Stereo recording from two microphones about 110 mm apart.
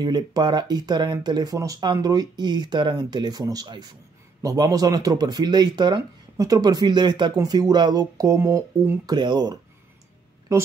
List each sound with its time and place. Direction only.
0.0 s speech: 40° right (ahead or behind)
9.1 s speech: 40° right (ahead or behind)